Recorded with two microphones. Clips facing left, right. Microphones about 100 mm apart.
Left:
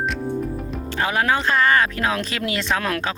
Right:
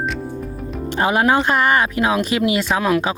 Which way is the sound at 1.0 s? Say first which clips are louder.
Right 5 dB; 20° right (ahead or behind).